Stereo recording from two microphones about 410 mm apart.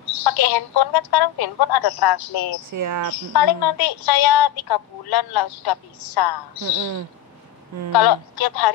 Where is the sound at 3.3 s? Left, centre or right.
Left.